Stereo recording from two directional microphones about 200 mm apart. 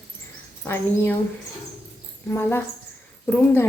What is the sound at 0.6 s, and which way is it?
Speech, 10° left (ahead or behind).